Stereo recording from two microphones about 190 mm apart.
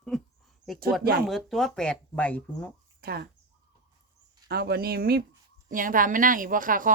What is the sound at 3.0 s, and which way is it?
Speech, 55° right (ahead or behind).